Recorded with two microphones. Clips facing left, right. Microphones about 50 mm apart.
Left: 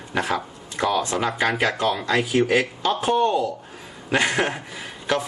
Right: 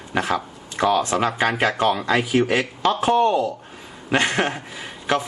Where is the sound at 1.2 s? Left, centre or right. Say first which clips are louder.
Right 1 dB; right.